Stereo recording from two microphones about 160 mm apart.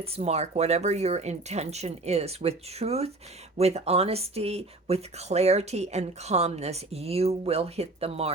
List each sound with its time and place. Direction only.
0.0 s speech: 45° right (ahead or behind)